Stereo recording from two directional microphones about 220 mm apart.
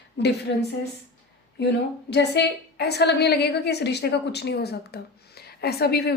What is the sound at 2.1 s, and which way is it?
A woman's voice, 50° left (ahead or behind).